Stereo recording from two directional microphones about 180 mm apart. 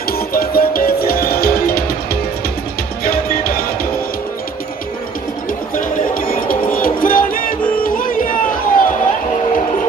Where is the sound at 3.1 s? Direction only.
55° left (ahead or behind).